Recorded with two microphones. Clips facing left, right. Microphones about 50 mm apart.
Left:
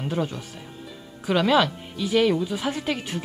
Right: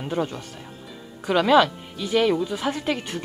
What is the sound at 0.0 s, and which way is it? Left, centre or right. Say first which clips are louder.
Speech: right 1 dB; centre.